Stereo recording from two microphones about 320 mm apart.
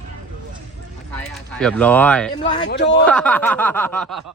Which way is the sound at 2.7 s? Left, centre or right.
Left.